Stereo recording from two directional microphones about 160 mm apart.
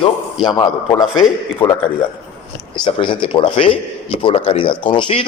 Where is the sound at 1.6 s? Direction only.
10° left (ahead or behind).